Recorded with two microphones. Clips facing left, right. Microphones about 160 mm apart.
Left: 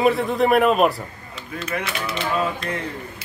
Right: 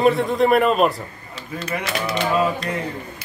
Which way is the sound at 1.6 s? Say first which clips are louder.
Right 2 dB; 40° right (ahead or behind).